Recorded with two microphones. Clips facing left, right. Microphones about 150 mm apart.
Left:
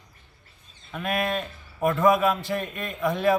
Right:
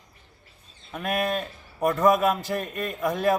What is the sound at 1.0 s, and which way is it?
A man's voice, 45° right (ahead or behind).